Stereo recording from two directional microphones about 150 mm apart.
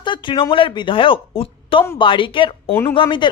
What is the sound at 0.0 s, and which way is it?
Speech, 30° left (ahead or behind).